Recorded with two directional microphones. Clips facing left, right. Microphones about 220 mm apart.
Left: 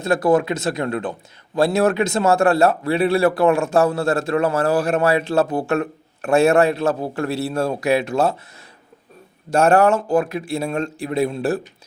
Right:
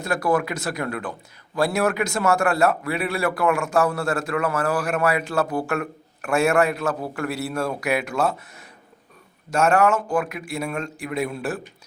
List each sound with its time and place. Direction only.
0.0 s a man's voice: 25° left (ahead or behind)